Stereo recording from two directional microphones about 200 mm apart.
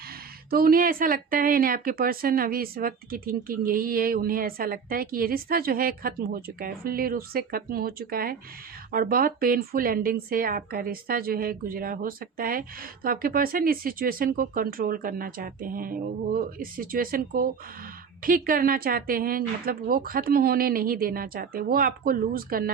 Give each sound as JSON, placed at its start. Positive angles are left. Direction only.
{"t": 0.5, "sound": "speech", "side_deg": -45}